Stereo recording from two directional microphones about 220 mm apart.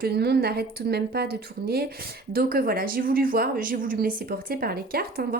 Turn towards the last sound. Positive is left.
turn(degrees=-45)  # may be behind; listen again after turning